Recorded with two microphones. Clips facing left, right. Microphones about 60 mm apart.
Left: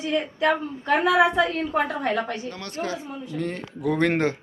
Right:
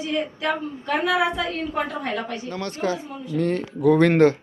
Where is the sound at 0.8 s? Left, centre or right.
Left.